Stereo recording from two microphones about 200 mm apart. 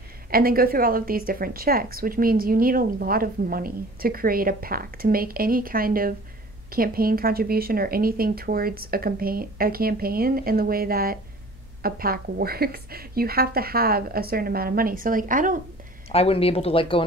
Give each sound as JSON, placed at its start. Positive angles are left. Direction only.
{"t": 0.3, "sound": "a woman's voice", "side_deg": -50}
{"t": 16.1, "sound": "speech", "side_deg": 30}